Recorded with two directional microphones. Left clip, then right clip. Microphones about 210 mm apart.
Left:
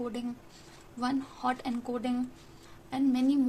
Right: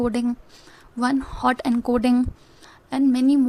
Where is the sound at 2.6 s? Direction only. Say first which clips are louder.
Right 9 dB; 45° right (ahead or behind).